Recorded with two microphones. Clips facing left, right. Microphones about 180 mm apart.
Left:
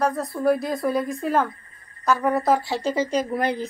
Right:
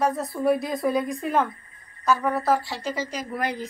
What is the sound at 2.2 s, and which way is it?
Speech, 15° left (ahead or behind).